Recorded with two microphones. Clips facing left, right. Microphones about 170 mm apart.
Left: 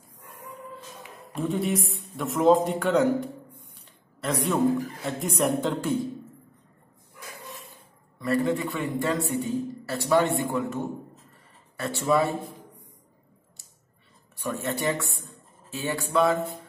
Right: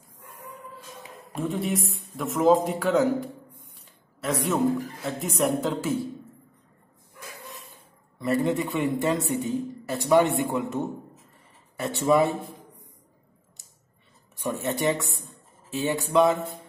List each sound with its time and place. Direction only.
1.3 s a man's voice: centre (ahead or behind)
8.2 s a man's voice: 20° right (ahead or behind)
14.3 s a man's voice: 20° right (ahead or behind)